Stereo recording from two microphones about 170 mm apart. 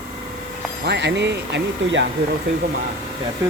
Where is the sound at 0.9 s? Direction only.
90° right.